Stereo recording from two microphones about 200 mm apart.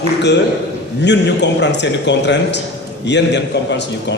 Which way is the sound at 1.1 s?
60° left (ahead or behind).